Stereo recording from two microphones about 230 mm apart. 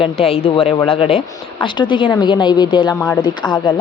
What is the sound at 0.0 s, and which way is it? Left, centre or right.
A woman's voice, left.